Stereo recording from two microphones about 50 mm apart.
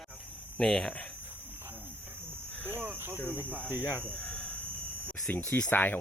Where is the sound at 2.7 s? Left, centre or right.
Right.